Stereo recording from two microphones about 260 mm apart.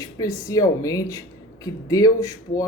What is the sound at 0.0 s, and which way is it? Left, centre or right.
Speech, centre.